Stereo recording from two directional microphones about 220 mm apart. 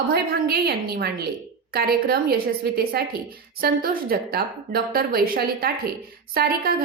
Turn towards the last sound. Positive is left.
turn(degrees=-45)  # may be behind; listen again after turning